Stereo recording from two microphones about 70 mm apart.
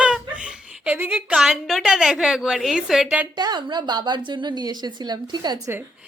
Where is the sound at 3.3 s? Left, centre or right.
Right.